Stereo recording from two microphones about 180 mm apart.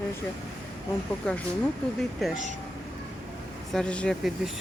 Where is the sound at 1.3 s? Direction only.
5° left (ahead or behind).